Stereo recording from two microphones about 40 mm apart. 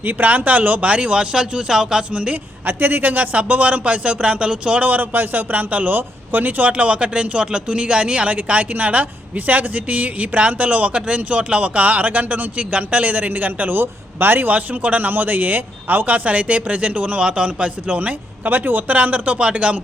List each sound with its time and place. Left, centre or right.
0.0 s a man's voice: right
0.9 s speech: right
2.3 s speech: right
4.8 s a man's voice: right
6.7 s speech: right
8.4 s speech: right
15.1 s speech: right
17.2 s speech: right
18.5 s a man's voice: right
19.4 s speech: right